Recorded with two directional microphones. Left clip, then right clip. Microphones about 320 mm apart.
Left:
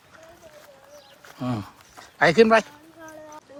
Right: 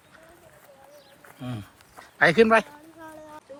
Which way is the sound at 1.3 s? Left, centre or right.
Centre.